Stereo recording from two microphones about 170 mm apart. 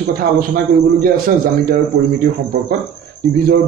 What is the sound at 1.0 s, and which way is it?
Speech, 60° right (ahead or behind).